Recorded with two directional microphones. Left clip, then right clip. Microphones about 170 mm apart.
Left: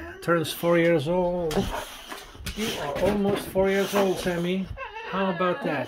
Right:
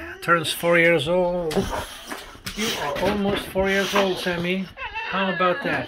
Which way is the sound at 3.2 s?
10° left (ahead or behind).